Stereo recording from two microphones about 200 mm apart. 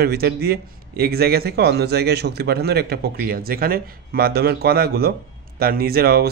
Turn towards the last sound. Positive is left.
turn(degrees=-50)  # may be behind; listen again after turning